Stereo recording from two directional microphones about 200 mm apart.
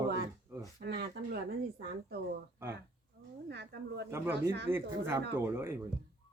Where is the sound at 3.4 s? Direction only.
60° right (ahead or behind).